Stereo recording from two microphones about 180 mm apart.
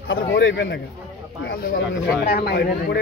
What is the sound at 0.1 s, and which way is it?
Speech, 80° left.